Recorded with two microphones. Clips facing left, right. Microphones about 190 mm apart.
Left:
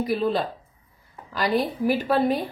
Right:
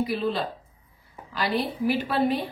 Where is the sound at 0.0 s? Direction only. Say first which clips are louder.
Left 3 dB; 45° left (ahead or behind).